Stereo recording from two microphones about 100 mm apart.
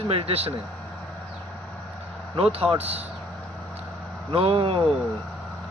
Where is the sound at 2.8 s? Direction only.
90° right.